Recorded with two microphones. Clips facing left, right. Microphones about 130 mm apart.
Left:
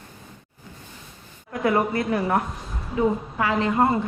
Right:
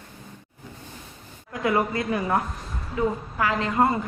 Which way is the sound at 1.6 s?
20° left (ahead or behind).